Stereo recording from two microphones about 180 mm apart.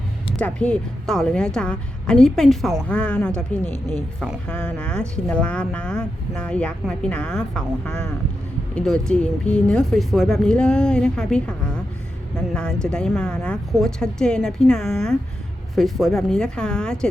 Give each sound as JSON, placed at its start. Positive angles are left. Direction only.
{"t": 0.3, "sound": "speech", "side_deg": 5}
{"t": 12.5, "sound": "speech", "side_deg": 5}